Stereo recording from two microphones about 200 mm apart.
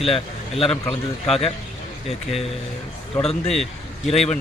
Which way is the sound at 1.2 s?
Centre (ahead or behind).